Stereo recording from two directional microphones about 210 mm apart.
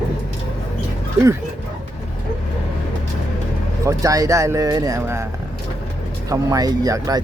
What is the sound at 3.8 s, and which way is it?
Speech, 15° right (ahead or behind).